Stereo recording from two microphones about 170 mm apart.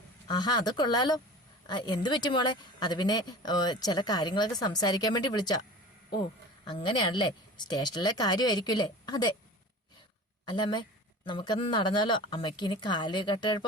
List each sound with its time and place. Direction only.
0.3 s speech: 25° left (ahead or behind)
6.7 s speech: 25° left (ahead or behind)
10.4 s speech: 25° left (ahead or behind)